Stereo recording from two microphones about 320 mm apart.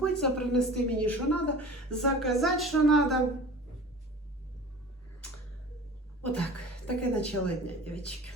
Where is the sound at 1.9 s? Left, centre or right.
Centre.